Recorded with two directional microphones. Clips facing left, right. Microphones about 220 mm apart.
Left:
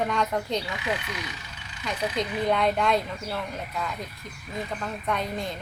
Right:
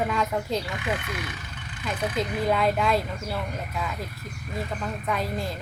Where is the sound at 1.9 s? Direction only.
5° right (ahead or behind).